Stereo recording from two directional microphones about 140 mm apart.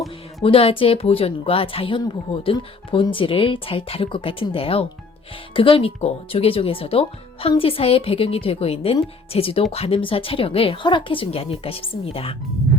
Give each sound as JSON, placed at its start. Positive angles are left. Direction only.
{"t": 0.4, "sound": "a woman's voice", "side_deg": 40}